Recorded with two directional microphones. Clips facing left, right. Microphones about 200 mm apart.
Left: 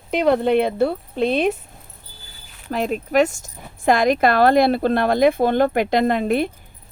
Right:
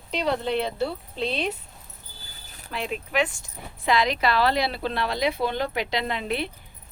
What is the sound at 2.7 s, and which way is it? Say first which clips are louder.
Speech: left 9 dB; 45° left (ahead or behind).